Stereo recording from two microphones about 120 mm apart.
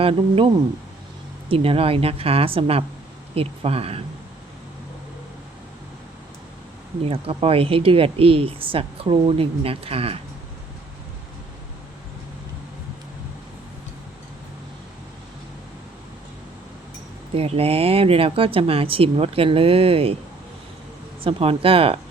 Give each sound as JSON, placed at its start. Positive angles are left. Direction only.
{"t": 0.0, "sound": "speech", "side_deg": -50}
{"t": 7.1, "sound": "speech", "side_deg": -50}
{"t": 17.3, "sound": "speech", "side_deg": -55}
{"t": 21.2, "sound": "speech", "side_deg": -50}